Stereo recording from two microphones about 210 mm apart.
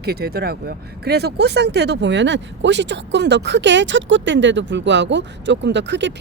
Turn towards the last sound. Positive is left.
turn(degrees=-60)  # may be behind; listen again after turning